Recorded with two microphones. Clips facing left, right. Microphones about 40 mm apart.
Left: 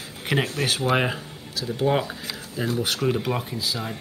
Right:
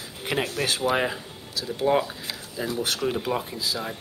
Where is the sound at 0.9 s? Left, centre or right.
Centre.